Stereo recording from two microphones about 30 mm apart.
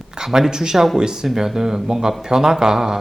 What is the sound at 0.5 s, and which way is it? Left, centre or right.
Speech, right.